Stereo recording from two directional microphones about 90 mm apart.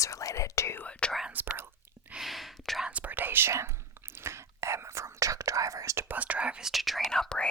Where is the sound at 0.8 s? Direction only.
15° left (ahead or behind).